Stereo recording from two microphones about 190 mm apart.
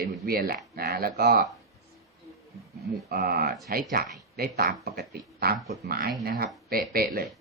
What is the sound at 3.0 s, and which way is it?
Speech, 55° right (ahead or behind).